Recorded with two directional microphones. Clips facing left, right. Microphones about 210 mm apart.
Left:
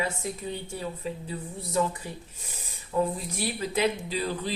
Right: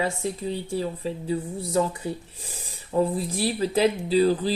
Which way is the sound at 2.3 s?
35° right (ahead or behind).